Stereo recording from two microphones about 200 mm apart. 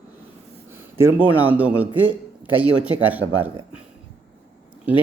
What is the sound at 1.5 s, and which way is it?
A man's voice, 10° right (ahead or behind).